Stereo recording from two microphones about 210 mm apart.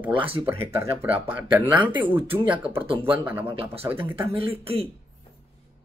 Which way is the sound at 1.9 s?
25° right (ahead or behind).